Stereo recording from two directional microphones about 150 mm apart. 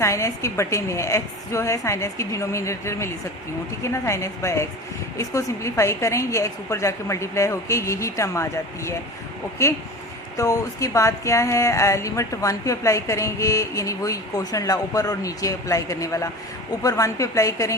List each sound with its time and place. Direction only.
0.0 s speech: 20° left (ahead or behind)